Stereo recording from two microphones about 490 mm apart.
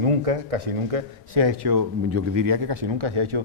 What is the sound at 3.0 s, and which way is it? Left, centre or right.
Speech, right.